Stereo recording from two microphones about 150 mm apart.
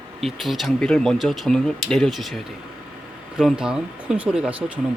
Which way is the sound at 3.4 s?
5° right (ahead or behind).